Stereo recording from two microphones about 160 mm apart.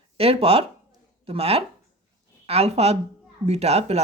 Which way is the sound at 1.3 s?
40° right (ahead or behind).